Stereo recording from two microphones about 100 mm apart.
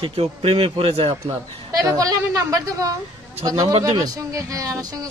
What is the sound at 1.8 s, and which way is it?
Speech, 35° right (ahead or behind).